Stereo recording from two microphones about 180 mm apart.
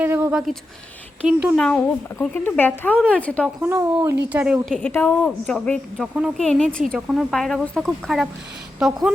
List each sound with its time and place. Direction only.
0.0 s a woman's voice: 10° right (ahead or behind)
2.1 s speech: 10° left (ahead or behind)
3.6 s a woman's voice: 15° right (ahead or behind)